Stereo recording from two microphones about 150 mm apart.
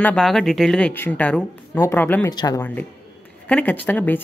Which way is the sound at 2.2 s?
25° left (ahead or behind).